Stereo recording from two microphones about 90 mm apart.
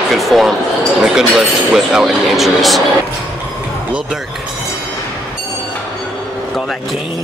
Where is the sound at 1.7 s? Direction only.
5° right (ahead or behind).